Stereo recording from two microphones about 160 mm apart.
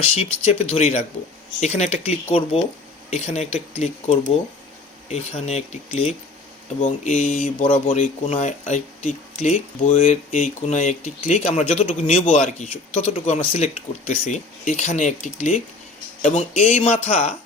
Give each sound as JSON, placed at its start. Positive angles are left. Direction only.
{"t": 0.0, "sound": "speech", "side_deg": 35}
{"t": 7.6, "sound": "speech", "side_deg": 35}
{"t": 7.9, "sound": "speech", "side_deg": 50}